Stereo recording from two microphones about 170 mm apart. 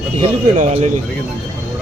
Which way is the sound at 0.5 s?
45° right (ahead or behind).